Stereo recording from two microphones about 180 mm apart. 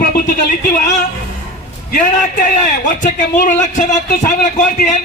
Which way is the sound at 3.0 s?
45° left (ahead or behind).